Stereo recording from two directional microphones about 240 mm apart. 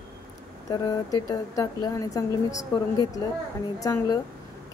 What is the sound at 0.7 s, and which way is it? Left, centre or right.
Speech, centre.